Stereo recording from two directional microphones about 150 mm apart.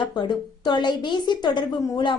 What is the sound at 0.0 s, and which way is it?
A woman's voice, 30° left (ahead or behind).